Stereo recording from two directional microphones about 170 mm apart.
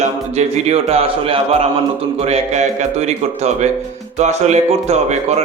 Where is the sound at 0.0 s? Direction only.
40° right (ahead or behind).